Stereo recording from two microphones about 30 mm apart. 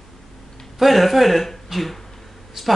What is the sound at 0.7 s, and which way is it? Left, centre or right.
Speech, centre.